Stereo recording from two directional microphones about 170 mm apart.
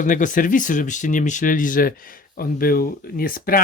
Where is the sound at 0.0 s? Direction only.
50° left (ahead or behind).